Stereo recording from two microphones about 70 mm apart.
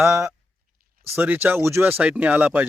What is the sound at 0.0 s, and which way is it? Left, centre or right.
Speech, right.